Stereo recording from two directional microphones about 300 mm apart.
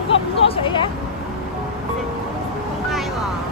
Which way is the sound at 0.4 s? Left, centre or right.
Centre.